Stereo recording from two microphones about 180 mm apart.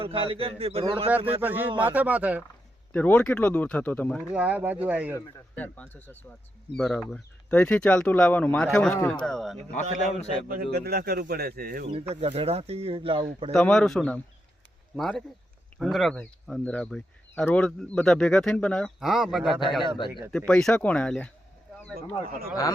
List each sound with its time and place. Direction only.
0.0 s a man's voice: 30° right (ahead or behind)
1.4 s speech: 10° right (ahead or behind)
2.9 s speech: 5° left (ahead or behind)
4.4 s speech: 10° right (ahead or behind)
5.1 s speech: 10° left (ahead or behind)
9.9 s a man's voice: 40° left (ahead or behind)
10.5 s speech: 60° right (ahead or behind)
12.2 s a man's voice: 35° right (ahead or behind)
13.5 s speech: 5° left (ahead or behind)
21.9 s speech: 55° right (ahead or behind)